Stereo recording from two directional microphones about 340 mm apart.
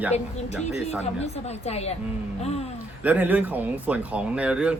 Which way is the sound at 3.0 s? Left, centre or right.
Centre.